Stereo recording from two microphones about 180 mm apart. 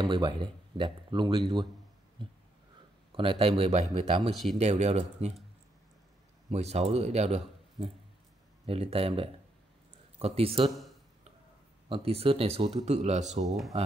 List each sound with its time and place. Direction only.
0.0 s speech: 25° right (ahead or behind)
2.2 s a sound: 30° right (ahead or behind)
3.1 s speech: 30° right (ahead or behind)
4.2 s speech: centre (ahead or behind)
4.6 s speech: 40° right (ahead or behind)
6.5 s speech: 35° right (ahead or behind)
11.9 s speech: 35° right (ahead or behind)
13.5 s speech: centre (ahead or behind)